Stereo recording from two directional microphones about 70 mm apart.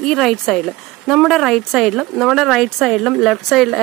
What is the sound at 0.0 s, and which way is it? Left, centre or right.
Speech, centre.